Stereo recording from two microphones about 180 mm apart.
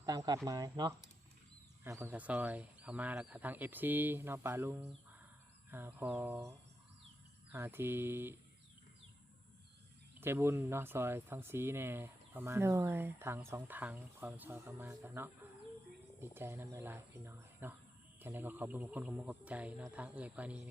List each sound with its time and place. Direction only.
0.0 s speech: 20° right (ahead or behind)
7.5 s speech: 15° right (ahead or behind)
10.2 s speech: 15° right (ahead or behind)